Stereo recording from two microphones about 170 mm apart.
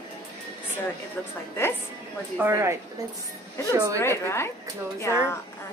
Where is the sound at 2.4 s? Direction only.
15° right (ahead or behind).